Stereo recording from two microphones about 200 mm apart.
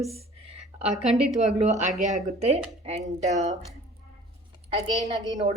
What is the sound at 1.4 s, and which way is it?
A woman's voice, 35° right (ahead or behind).